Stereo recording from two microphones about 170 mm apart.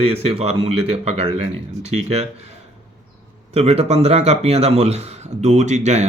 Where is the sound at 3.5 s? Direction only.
35° right (ahead or behind).